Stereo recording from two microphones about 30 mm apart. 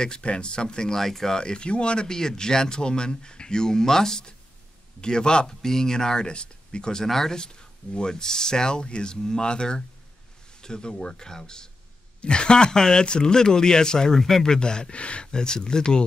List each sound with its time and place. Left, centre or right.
0.0 s speech: left
0.9 s speech: centre
1.4 s speech: left
2.0 s speech: left
5.6 s speech: centre; by 6.9 s left
7.1 s speech: centre
7.3 s speech: left
14.9 s speech: left
15.3 s speech: left